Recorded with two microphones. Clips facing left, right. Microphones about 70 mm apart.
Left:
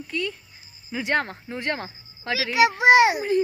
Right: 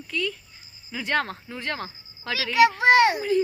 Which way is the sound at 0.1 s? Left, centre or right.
Centre.